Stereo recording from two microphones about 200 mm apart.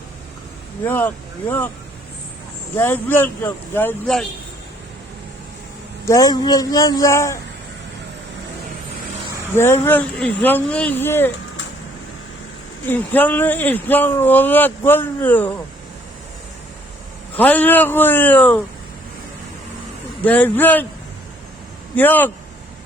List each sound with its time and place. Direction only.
0.9 s speech: 10° left (ahead or behind)
2.7 s speech: 10° left (ahead or behind)
6.1 s a man's voice: 20° left (ahead or behind)
9.6 s speech: 10° left (ahead or behind)
12.8 s speech: 10° left (ahead or behind)
17.3 s speech: 10° left (ahead or behind)
20.2 s speech: 10° left (ahead or behind)
21.9 s speech: 10° left (ahead or behind)